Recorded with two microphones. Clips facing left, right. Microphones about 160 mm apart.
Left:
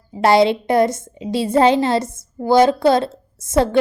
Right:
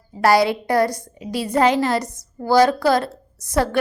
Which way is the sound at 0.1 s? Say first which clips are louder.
Left 3 dB; 25° left (ahead or behind).